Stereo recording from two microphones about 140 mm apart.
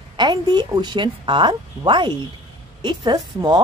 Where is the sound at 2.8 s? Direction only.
35° right (ahead or behind).